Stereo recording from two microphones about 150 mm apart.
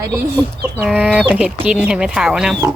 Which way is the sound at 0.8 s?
10° right (ahead or behind).